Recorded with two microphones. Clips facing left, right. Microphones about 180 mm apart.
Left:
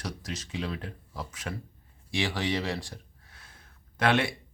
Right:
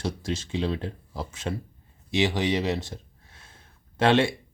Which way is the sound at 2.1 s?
20° right (ahead or behind).